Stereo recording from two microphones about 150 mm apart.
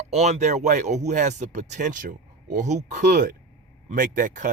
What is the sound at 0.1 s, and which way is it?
Speech, 50° right (ahead or behind).